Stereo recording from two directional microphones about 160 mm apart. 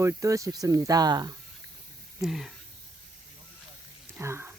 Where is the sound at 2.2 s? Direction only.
Centre (ahead or behind).